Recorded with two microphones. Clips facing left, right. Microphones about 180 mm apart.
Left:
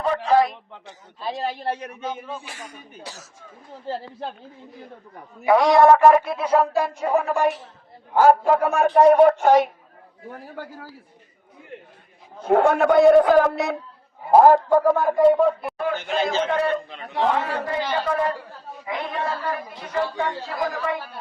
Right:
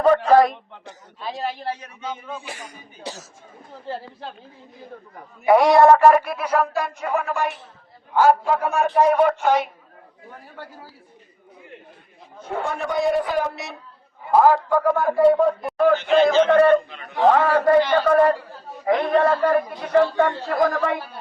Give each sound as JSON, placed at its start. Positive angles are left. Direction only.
{"t": 0.0, "sound": "a sound", "side_deg": -45}
{"t": 3.0, "sound": "speech", "side_deg": -25}
{"t": 5.5, "sound": "speech", "side_deg": -10}
{"t": 5.9, "sound": "music", "side_deg": 15}
{"t": 8.1, "sound": "speech", "side_deg": 40}
{"t": 9.0, "sound": "speech", "side_deg": 35}
{"t": 12.5, "sound": "a man's voice", "side_deg": 70}
{"t": 14.3, "sound": "speech", "side_deg": 40}
{"t": 14.7, "sound": "music", "side_deg": 20}
{"t": 15.1, "sound": "speech", "side_deg": -10}
{"t": 16.0, "sound": "speech", "side_deg": 45}
{"t": 16.5, "sound": "a man's voice", "side_deg": -60}